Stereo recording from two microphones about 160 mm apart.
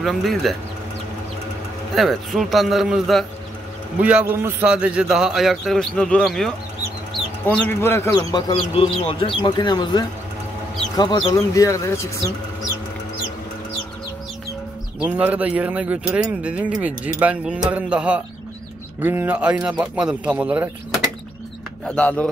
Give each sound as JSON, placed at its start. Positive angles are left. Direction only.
{"t": 0.0, "sound": "a man's voice", "side_deg": 0}
{"t": 2.0, "sound": "a man's voice", "side_deg": 0}
{"t": 15.0, "sound": "speech", "side_deg": -10}
{"t": 21.8, "sound": "speech", "side_deg": 10}